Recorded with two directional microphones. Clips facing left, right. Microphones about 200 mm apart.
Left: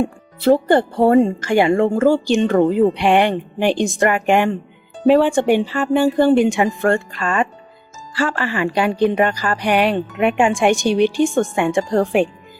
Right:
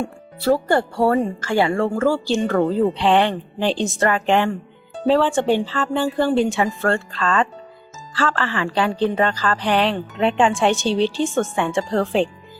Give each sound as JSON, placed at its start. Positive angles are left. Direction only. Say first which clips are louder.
{"t": 0.0, "sound": "speech", "louder": "left 5 dB", "side_deg": 20}